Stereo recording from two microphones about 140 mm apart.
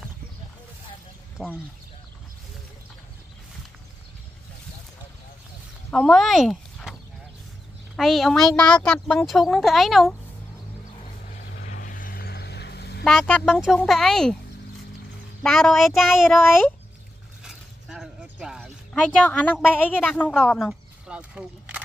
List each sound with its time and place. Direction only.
1.4 s speech: centre (ahead or behind)
5.9 s speech: 10° left (ahead or behind)
11.4 s vehicle: 65° left (ahead or behind); by 12.3 s 85° left
13.0 s speech: 5° left (ahead or behind)
15.4 s speech: 5° left (ahead or behind)
16.3 s a woman's voice: 15° left (ahead or behind)
17.4 s a sound: 5° right (ahead or behind)
19.0 s a woman's voice: 10° left (ahead or behind)
21.1 s a sound: 5° right (ahead or behind)